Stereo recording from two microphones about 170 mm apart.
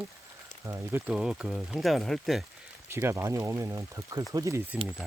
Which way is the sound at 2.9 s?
15° right (ahead or behind).